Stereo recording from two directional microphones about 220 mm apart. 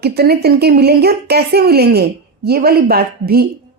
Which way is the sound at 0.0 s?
45° right (ahead or behind).